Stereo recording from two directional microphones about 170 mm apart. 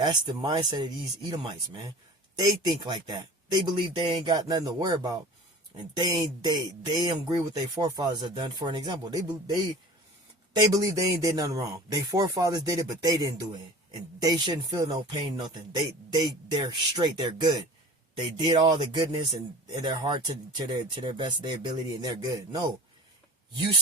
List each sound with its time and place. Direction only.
0.0 s speech: 25° right (ahead or behind)